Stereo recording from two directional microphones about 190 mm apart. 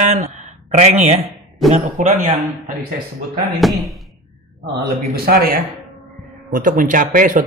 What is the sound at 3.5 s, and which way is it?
Speech, centre (ahead or behind).